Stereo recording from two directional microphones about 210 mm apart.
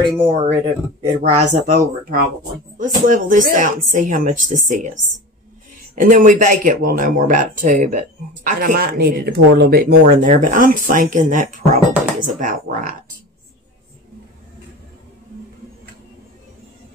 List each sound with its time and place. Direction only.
0.0 s speech: 25° right (ahead or behind)
5.9 s speech: 40° right (ahead or behind)